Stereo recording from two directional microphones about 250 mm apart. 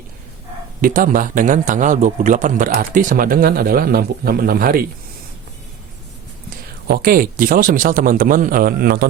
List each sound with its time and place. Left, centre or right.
0.8 s a man's voice: right
6.8 s a man's voice: right